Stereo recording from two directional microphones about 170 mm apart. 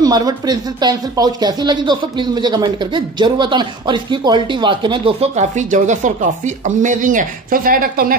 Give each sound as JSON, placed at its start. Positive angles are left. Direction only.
{"t": 0.0, "sound": "speech", "side_deg": -20}